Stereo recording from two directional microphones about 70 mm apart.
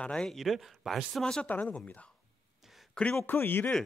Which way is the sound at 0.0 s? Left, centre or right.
Centre.